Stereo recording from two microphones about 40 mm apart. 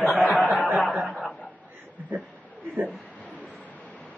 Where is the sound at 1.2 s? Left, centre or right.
Left.